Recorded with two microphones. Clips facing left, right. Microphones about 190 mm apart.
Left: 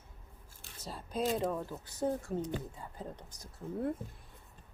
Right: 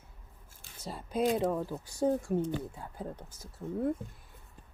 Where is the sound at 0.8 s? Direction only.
10° right (ahead or behind).